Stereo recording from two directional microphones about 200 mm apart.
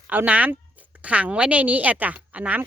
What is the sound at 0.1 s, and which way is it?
A woman's voice, 10° right (ahead or behind).